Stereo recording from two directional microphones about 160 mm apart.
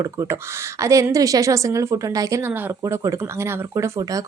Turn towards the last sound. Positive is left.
turn(degrees=-20)  # may be behind; listen again after turning